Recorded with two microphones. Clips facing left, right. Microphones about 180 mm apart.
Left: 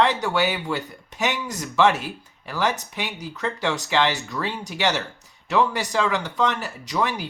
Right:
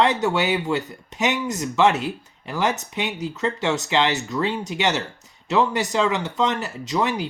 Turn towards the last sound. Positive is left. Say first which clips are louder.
# right 2 dB
turn(degrees=-20)  # may be behind; listen again after turning